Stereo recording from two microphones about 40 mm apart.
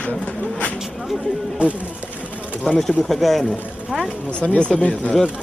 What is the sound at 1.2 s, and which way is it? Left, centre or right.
Speech, right.